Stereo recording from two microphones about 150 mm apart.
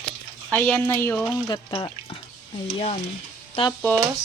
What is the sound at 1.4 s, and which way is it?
Speech, 30° left (ahead or behind).